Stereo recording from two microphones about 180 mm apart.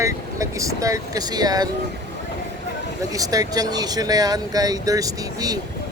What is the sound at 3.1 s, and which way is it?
Speech, 20° right (ahead or behind).